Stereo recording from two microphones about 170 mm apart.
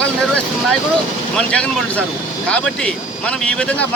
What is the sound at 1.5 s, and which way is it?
Speech, 5° left (ahead or behind).